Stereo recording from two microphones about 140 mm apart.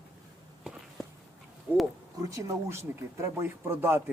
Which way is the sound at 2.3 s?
20° right (ahead or behind).